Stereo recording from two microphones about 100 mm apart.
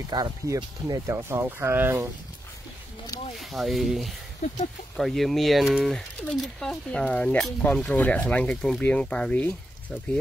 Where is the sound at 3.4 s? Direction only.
Centre (ahead or behind).